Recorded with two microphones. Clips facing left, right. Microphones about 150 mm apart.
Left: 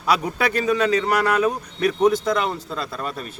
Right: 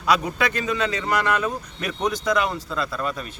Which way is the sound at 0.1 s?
35° left (ahead or behind).